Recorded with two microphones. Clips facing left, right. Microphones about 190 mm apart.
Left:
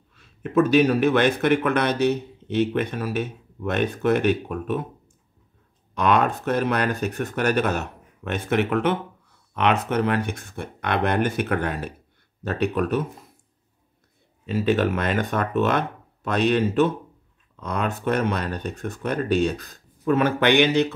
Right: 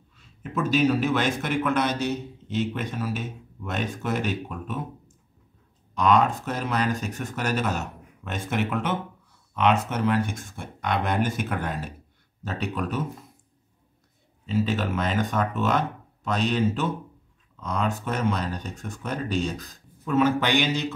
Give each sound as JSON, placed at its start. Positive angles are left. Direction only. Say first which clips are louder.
{"t": 0.1, "sound": "speech", "louder": "left 9 dB", "side_deg": 60}
{"t": 14.4, "sound": "speech", "louder": "left 4 dB", "side_deg": 60}